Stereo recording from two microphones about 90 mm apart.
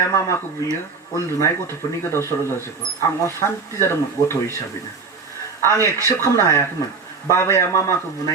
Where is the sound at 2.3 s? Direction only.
40° left (ahead or behind).